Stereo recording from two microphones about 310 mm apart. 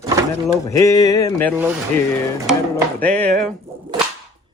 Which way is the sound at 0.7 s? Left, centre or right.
Centre.